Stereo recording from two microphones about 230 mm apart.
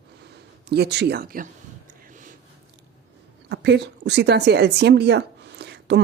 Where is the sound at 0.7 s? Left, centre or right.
Right.